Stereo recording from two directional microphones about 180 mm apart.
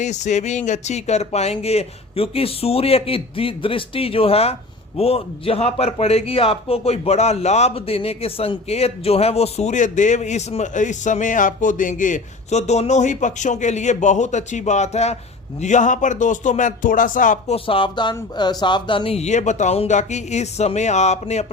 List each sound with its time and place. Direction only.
0.0 s a man's voice: 40° left (ahead or behind)
17.7 s a man's voice: 30° left (ahead or behind)